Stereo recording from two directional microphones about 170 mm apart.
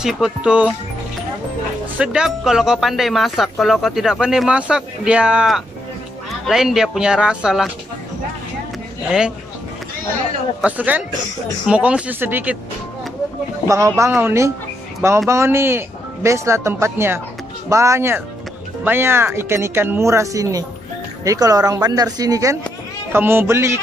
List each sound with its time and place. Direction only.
0.0 s speech: 5° right (ahead or behind)
2.0 s speech: 5° right (ahead or behind)
10.6 s speech: 10° right (ahead or behind)
13.7 s speech: 20° right (ahead or behind)